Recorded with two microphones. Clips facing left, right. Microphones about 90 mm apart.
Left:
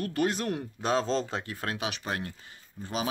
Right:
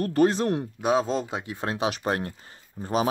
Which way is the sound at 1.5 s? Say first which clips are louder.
Right 6 dB; 25° right (ahead or behind).